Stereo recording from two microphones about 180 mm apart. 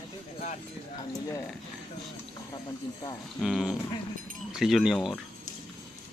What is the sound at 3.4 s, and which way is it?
Speech, centre (ahead or behind).